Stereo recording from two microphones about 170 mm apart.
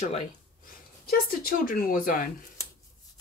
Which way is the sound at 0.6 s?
55° left (ahead or behind).